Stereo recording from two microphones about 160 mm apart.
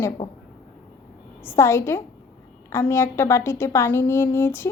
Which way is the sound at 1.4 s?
15° left (ahead or behind).